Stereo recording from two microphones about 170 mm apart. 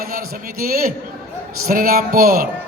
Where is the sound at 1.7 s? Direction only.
60° right (ahead or behind).